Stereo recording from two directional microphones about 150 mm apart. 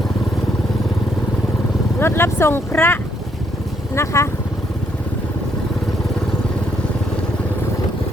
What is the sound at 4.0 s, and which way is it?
Speech, 20° left (ahead or behind).